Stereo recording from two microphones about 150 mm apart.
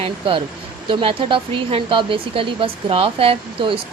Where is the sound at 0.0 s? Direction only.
35° right (ahead or behind).